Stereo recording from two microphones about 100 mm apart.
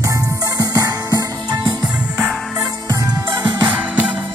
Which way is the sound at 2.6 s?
30° right (ahead or behind).